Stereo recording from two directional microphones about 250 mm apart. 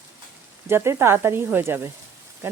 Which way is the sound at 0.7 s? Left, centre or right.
Centre.